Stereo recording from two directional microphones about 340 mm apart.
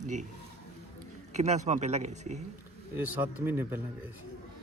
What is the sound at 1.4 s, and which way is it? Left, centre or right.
Speech, centre.